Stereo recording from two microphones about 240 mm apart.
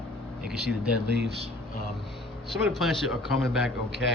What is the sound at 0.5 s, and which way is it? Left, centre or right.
Speech, right.